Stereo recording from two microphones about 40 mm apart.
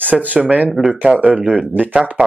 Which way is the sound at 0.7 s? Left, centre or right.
Centre.